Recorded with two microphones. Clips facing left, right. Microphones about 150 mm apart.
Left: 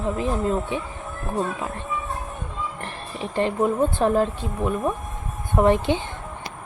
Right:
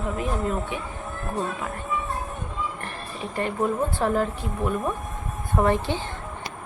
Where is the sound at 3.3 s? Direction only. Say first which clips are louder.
Left 4 dB; 20° left (ahead or behind).